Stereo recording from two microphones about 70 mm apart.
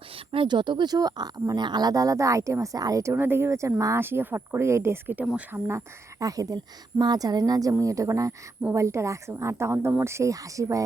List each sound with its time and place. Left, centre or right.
0.4 s speech: right
3.1 s speech: right
3.8 s speech: right
4.0 s speech: right
6.1 s speech: right
7.0 s speech: right